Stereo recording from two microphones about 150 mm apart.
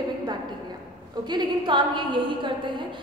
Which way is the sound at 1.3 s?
30° right (ahead or behind).